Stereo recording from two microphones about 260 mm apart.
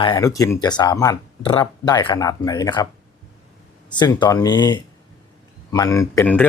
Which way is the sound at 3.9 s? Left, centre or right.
Centre.